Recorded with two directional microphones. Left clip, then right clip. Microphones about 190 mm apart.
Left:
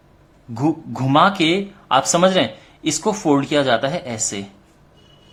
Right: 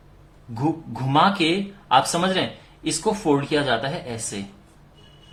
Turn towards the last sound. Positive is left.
turn(degrees=35)  # may be behind; listen again after turning